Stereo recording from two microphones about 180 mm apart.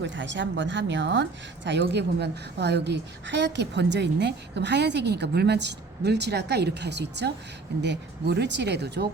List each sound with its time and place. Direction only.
0.0 s speech: 90° right; by 9.0 s 70° right (ahead or behind)